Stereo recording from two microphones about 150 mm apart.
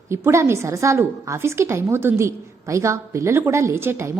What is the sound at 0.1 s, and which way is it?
A woman's voice, 20° right (ahead or behind).